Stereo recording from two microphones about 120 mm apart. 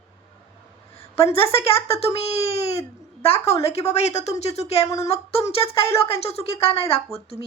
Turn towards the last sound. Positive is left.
turn(degrees=55)  # may be behind; listen again after turning